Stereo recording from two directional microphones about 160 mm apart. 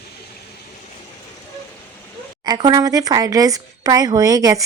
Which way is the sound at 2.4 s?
25° right (ahead or behind).